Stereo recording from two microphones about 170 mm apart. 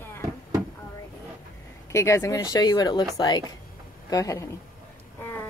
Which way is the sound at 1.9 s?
15° left (ahead or behind).